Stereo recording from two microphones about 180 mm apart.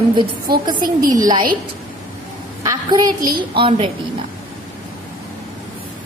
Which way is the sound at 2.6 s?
20° right (ahead or behind).